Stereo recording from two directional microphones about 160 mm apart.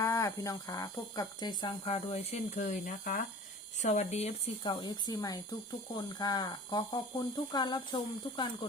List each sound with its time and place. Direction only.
0.0 s speech: 20° left (ahead or behind); by 3.2 s 55° left (ahead or behind)
3.8 s speech: 45° left (ahead or behind); by 8.4 s 30° left (ahead or behind)